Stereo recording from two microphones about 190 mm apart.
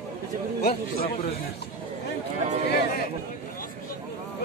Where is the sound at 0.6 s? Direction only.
55° left (ahead or behind).